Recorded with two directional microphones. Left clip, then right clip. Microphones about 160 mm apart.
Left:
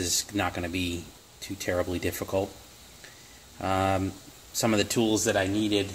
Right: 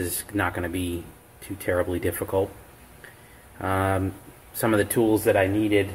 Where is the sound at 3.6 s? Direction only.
40° left (ahead or behind).